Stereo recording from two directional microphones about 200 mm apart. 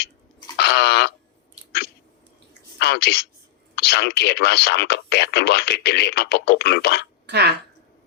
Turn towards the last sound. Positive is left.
turn(degrees=-55)  # may be behind; listen again after turning